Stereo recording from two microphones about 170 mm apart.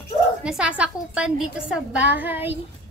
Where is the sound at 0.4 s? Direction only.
5° right (ahead or behind).